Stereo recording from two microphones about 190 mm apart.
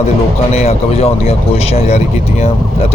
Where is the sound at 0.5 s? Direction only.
35° left (ahead or behind).